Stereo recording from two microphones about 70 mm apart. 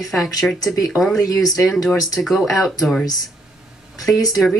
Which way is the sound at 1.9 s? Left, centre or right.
Left.